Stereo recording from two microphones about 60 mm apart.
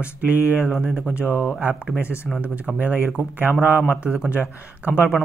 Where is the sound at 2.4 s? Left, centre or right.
Right.